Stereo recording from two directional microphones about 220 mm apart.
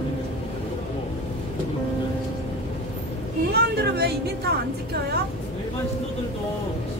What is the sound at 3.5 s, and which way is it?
Speech, 50° right (ahead or behind).